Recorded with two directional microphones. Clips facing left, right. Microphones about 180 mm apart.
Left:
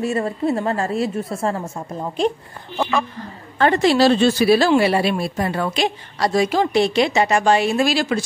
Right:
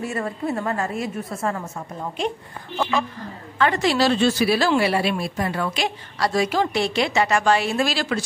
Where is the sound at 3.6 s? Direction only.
30° left (ahead or behind).